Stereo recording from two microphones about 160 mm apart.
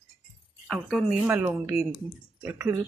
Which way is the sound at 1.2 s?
15° right (ahead or behind).